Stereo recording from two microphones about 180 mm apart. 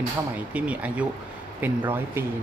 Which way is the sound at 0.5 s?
10° right (ahead or behind).